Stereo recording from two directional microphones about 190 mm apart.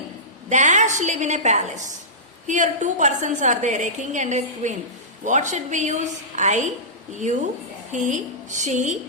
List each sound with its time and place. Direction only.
0.5 s a woman's voice: 40° right (ahead or behind)
7.9 s a woman's voice: 40° right (ahead or behind)